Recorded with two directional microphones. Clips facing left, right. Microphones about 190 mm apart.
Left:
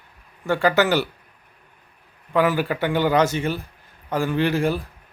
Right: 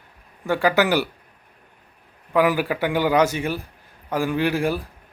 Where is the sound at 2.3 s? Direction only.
10° right (ahead or behind).